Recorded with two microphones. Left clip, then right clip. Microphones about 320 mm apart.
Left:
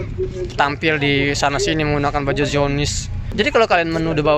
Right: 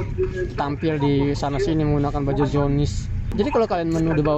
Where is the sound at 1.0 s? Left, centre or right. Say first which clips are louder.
Left 4 dB; left.